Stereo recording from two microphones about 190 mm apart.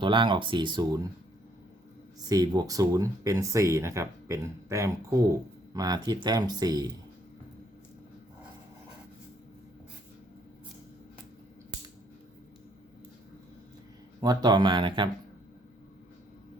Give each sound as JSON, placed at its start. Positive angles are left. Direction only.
{"t": 0.0, "sound": "speech", "side_deg": -25}
{"t": 2.3, "sound": "speech", "side_deg": -20}
{"t": 14.2, "sound": "speech", "side_deg": -20}